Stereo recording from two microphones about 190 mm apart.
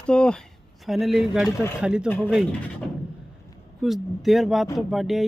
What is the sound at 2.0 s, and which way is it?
Speech, 10° left (ahead or behind).